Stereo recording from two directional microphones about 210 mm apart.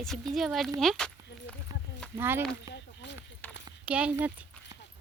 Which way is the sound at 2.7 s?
55° left (ahead or behind).